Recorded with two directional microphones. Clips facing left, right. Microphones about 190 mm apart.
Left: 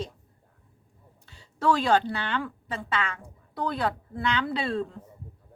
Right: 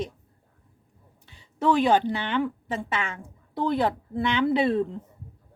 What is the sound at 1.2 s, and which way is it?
A woman's voice, 20° right (ahead or behind).